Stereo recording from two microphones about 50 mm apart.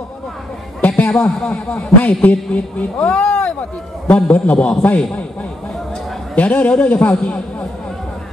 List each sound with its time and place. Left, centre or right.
0.7 s chatter: left
1.2 s a man's voice: left
4.1 s a man's voice: left
6.3 s a man's voice: left